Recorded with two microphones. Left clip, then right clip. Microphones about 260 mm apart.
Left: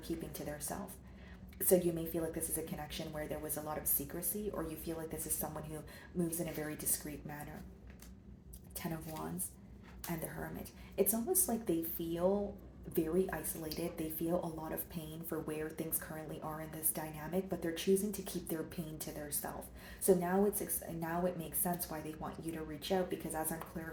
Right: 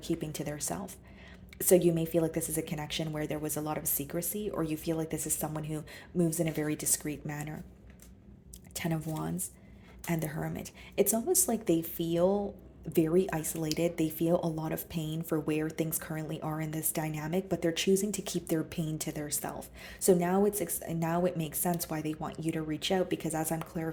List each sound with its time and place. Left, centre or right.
0.1 s speech: right
8.7 s speech: right